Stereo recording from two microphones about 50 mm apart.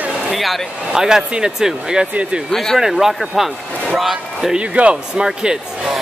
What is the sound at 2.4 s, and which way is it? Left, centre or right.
Speech, centre.